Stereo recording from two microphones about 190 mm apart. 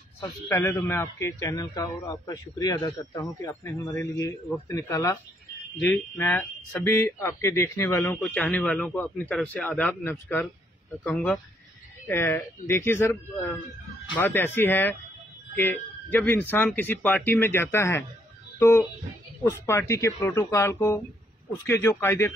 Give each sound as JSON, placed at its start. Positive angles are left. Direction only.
{"t": 0.5, "sound": "speech", "side_deg": 10}